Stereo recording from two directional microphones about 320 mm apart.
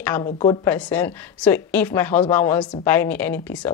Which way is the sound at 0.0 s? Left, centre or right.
Centre.